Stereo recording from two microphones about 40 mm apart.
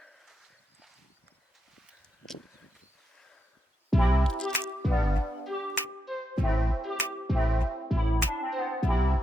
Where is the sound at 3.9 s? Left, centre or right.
Centre.